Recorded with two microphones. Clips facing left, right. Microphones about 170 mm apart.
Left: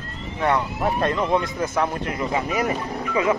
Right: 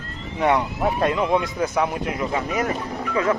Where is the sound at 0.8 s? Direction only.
Centre (ahead or behind).